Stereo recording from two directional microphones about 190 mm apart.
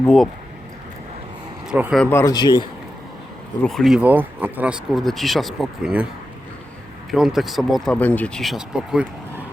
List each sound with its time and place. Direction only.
0.0 s speech: 5° left (ahead or behind)
1.6 s speech: 5° right (ahead or behind)
2.0 s speech: 10° left (ahead or behind)
3.6 s speech: centre (ahead or behind)
7.1 s speech: centre (ahead or behind)